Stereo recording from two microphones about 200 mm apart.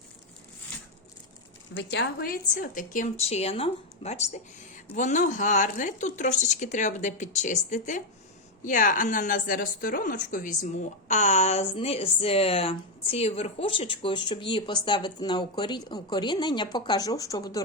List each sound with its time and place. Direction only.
1.7 s a woman's voice: 55° left (ahead or behind); by 17.6 s 15° left (ahead or behind)